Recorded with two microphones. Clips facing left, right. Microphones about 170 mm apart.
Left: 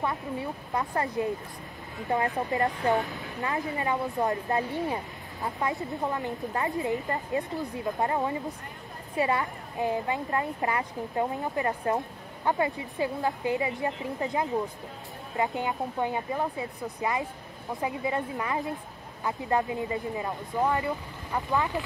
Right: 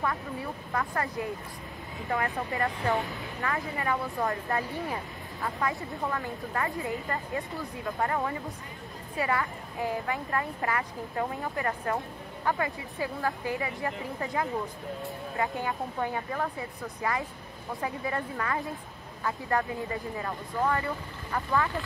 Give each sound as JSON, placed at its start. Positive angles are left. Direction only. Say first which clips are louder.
{"t": 0.7, "sound": "speech", "louder": "left 3 dB", "side_deg": 20}
{"t": 3.0, "sound": "speech", "louder": "left 2 dB", "side_deg": 0}
{"t": 3.3, "sound": "speech", "louder": "left 2 dB", "side_deg": 20}